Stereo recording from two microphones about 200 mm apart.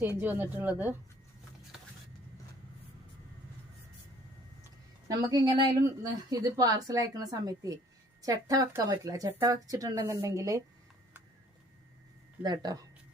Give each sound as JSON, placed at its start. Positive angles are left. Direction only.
{"t": 0.2, "sound": "a woman's voice", "side_deg": -10}
{"t": 5.0, "sound": "a woman's voice", "side_deg": -20}
{"t": 12.4, "sound": "a woman's voice", "side_deg": -20}